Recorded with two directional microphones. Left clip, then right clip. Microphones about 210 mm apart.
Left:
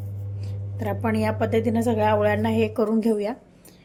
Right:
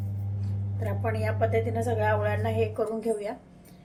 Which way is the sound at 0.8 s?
45° left (ahead or behind).